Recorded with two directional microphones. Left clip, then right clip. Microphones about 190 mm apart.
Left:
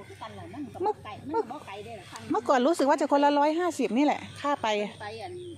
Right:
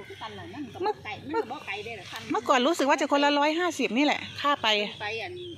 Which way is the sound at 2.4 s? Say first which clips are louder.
Even; 20° left (ahead or behind).